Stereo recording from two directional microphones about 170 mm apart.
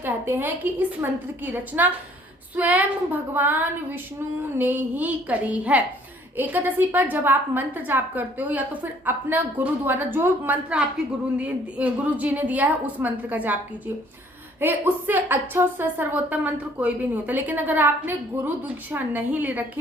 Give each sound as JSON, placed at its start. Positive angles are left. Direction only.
{"t": 0.0, "sound": "a woman's voice", "side_deg": -10}
{"t": 14.6, "sound": "a woman's voice", "side_deg": -10}